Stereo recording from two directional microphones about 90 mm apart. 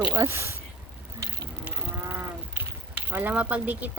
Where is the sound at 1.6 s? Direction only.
20° right (ahead or behind).